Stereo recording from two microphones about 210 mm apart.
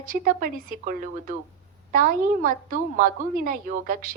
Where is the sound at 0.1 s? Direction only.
40° right (ahead or behind).